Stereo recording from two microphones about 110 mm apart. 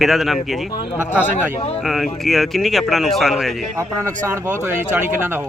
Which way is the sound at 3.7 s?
25° right (ahead or behind).